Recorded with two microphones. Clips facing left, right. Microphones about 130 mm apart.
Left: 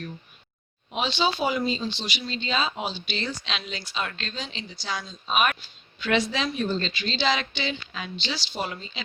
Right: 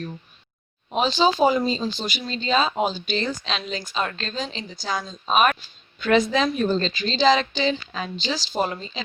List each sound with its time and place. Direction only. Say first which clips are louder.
0.9 s speech: right 6 dB; 40° right (ahead or behind)